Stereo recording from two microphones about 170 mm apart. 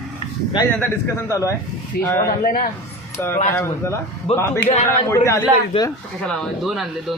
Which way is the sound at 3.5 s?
15° left (ahead or behind).